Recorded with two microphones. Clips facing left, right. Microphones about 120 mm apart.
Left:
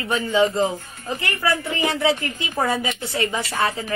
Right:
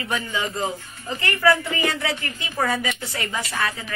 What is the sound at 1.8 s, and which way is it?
Speech, 25° left (ahead or behind).